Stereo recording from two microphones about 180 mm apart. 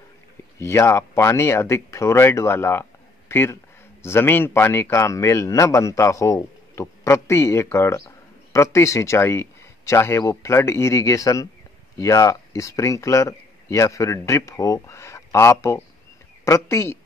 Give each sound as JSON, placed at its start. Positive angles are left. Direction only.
{"t": 0.6, "sound": "speech", "side_deg": 15}